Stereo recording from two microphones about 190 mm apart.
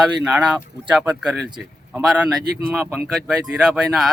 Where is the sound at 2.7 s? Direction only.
10° right (ahead or behind).